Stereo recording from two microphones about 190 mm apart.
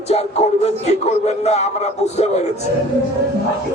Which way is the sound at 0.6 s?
35° left (ahead or behind).